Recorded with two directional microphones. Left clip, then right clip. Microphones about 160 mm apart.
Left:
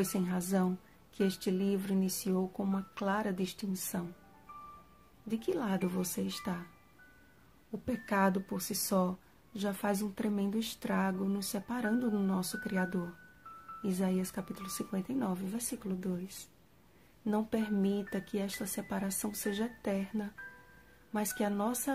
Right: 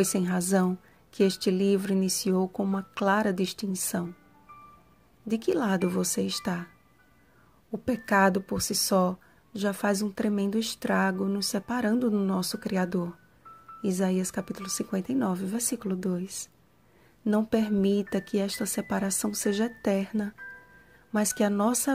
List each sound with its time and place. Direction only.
0.0 s speech: 40° right (ahead or behind)
5.3 s speech: 40° right (ahead or behind)
7.8 s speech: 40° right (ahead or behind)